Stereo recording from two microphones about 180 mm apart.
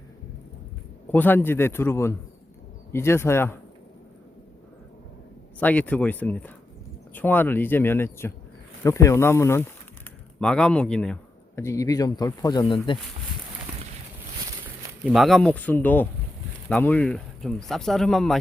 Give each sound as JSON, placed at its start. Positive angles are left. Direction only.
{"t": 1.1, "sound": "speech", "side_deg": 10}
{"t": 5.5, "sound": "speech", "side_deg": 10}
{"t": 10.4, "sound": "speech", "side_deg": 5}
{"t": 11.5, "sound": "speech", "side_deg": 15}
{"t": 15.0, "sound": "speech", "side_deg": 0}